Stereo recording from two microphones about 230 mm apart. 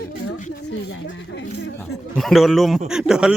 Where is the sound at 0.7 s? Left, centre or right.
Left.